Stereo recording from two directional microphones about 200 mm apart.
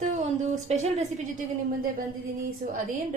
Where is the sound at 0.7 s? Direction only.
35° right (ahead or behind).